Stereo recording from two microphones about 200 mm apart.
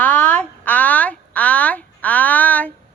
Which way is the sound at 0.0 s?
10° left (ahead or behind).